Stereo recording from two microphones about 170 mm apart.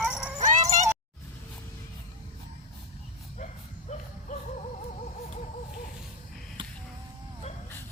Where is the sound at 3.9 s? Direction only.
40° left (ahead or behind).